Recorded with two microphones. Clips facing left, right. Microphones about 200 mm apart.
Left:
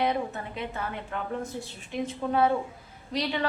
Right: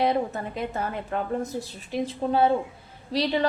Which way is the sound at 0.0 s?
35° right (ahead or behind).